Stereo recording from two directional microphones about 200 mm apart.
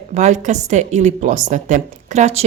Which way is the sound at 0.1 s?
35° right (ahead or behind).